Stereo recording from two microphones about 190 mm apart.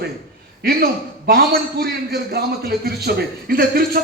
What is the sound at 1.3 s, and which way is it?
A man's voice, 55° right (ahead or behind).